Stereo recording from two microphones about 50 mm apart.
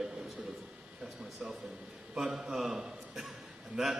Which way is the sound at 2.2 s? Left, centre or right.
Centre.